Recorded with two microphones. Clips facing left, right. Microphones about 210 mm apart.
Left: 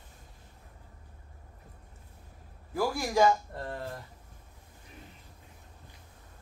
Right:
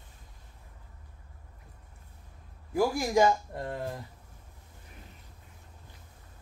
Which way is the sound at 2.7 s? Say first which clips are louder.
Right 2 dB; 15° right (ahead or behind).